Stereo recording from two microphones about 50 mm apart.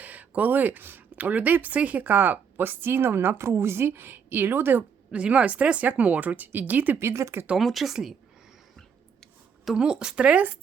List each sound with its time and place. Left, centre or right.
0.0 s speech: right
3.3 s a woman's voice: right
5.1 s speech: right
7.0 s speech: right
7.6 s speech: centre
9.7 s a woman's voice: centre